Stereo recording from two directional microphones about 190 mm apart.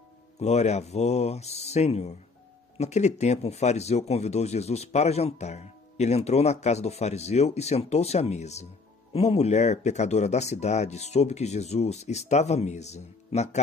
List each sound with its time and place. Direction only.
0.4 s speech: 35° left (ahead or behind)